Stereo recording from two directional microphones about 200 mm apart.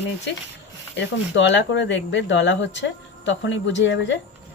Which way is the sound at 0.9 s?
65° left (ahead or behind).